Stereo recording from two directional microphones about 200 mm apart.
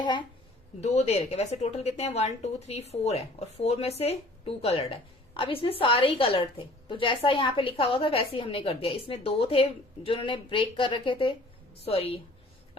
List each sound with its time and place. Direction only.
0.0 s speech: 25° left (ahead or behind)
0.8 s a woman's voice: 35° left (ahead or behind)